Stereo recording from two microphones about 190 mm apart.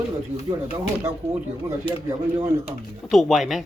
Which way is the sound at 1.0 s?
15° right (ahead or behind).